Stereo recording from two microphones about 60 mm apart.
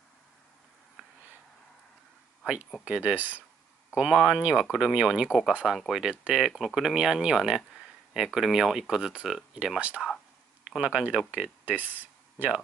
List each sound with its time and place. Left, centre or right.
2.8 s speech: right
3.9 s speech: centre
5.7 s speech: centre
9.8 s speech: right
11.6 s a sound: right